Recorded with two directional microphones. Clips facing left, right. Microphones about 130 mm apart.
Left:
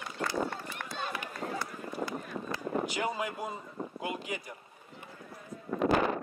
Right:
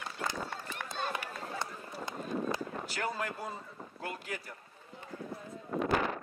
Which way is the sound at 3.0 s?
10° left (ahead or behind).